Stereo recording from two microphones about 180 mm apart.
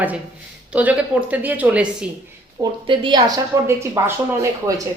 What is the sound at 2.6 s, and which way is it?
Speech, 25° right (ahead or behind).